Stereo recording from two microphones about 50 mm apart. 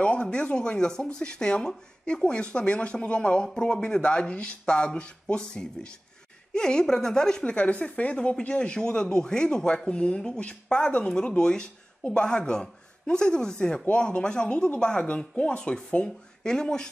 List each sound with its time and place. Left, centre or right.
0.0 s a woman's voice: left